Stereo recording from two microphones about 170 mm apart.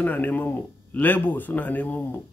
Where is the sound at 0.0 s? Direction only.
10° left (ahead or behind).